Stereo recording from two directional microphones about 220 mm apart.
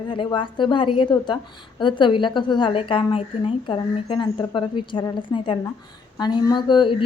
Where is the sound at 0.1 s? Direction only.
20° left (ahead or behind).